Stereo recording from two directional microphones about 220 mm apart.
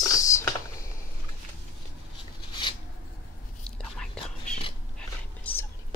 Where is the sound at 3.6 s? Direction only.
5° left (ahead or behind).